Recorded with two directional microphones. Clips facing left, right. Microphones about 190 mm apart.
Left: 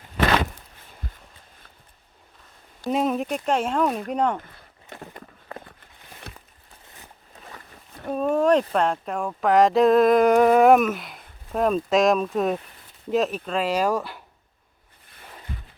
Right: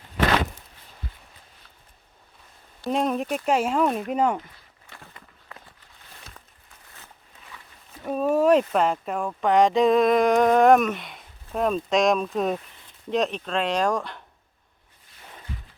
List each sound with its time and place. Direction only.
2.9 s speech: 5° left (ahead or behind)
4.9 s walk: 45° left (ahead or behind)
6.3 s a sound: 65° left (ahead or behind)
8.0 s speech: 5° right (ahead or behind)